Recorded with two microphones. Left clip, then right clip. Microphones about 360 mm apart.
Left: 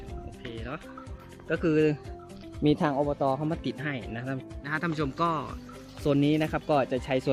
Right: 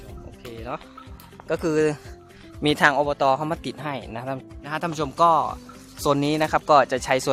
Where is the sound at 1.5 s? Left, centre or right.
Centre.